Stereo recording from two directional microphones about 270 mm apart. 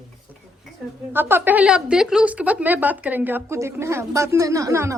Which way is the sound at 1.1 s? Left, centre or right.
Centre.